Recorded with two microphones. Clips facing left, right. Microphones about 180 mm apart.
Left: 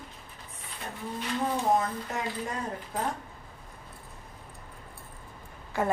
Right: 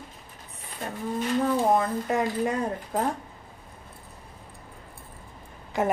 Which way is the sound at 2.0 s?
60° right (ahead or behind).